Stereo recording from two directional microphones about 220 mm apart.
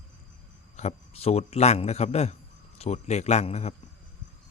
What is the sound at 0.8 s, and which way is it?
A man's voice, 30° left (ahead or behind).